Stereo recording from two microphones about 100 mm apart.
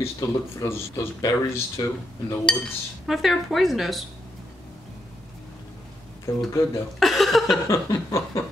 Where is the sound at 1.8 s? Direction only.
40° left (ahead or behind).